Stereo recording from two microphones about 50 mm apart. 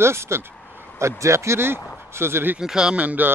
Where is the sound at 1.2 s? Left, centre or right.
Right.